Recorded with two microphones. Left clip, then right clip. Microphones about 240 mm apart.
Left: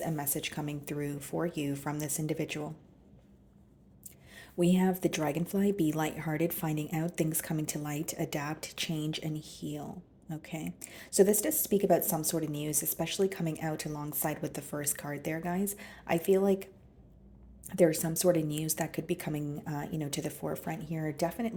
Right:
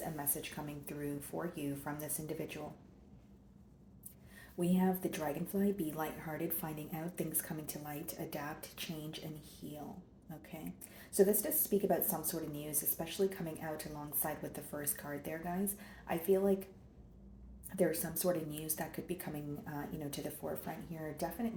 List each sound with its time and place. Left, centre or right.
0.0 s a woman's voice: left
4.5 s a woman's voice: left
17.7 s a woman's voice: left